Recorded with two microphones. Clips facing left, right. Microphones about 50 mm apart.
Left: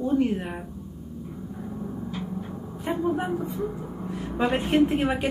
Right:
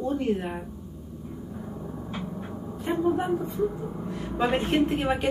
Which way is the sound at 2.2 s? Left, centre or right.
Right.